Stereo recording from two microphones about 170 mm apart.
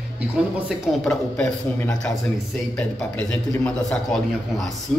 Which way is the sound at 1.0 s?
5° left (ahead or behind).